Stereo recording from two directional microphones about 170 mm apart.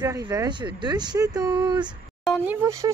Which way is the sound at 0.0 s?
20° right (ahead or behind).